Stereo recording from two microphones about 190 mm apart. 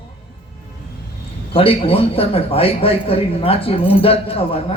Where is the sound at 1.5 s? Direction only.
30° left (ahead or behind).